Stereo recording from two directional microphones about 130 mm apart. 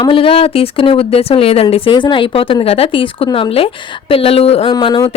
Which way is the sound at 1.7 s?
40° left (ahead or behind).